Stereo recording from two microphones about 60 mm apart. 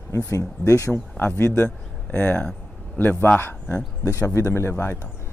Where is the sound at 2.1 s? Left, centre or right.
Left.